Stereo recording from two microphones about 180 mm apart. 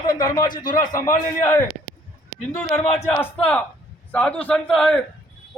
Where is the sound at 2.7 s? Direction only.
15° left (ahead or behind).